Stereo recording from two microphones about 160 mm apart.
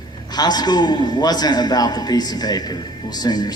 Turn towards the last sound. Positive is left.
turn(degrees=25)  # may be behind; listen again after turning